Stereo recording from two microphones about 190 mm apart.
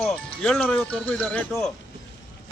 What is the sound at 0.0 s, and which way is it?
Speech, 5° left (ahead or behind).